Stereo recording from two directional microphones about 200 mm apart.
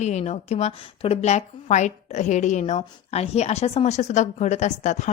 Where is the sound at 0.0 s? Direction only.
35° left (ahead or behind).